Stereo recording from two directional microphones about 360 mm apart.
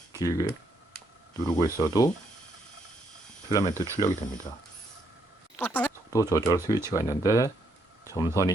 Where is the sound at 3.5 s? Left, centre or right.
Centre.